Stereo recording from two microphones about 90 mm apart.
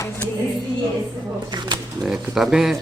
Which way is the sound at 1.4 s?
50° right (ahead or behind).